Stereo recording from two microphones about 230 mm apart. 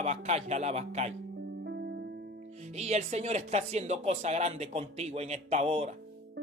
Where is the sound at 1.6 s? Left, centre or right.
Right.